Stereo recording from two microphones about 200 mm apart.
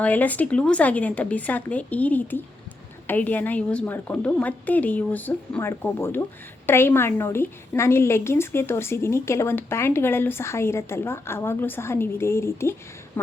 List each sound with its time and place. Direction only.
0.0 s a woman's voice: 10° left (ahead or behind)